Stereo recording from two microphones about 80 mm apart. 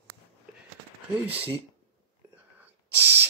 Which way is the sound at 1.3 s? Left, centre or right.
Right.